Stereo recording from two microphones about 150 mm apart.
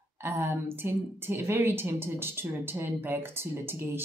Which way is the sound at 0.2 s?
15° right (ahead or behind).